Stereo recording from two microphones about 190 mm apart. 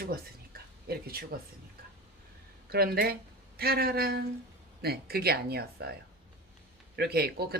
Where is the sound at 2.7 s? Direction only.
55° right (ahead or behind).